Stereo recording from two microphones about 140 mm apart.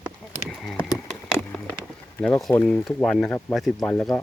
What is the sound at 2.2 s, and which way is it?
Speech, 5° left (ahead or behind).